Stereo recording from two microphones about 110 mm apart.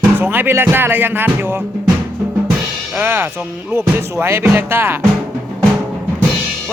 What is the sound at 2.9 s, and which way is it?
Speech, 15° right (ahead or behind).